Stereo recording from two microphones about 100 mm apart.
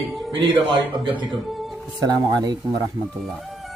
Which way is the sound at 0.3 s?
60° right (ahead or behind).